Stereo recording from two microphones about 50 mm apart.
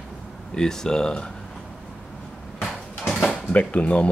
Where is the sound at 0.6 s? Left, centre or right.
Centre.